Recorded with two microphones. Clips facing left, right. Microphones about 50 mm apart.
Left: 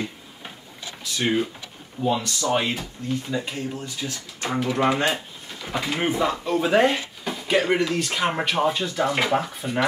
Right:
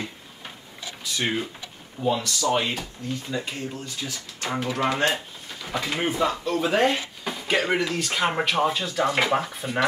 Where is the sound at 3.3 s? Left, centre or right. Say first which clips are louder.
Left 2 dB; centre.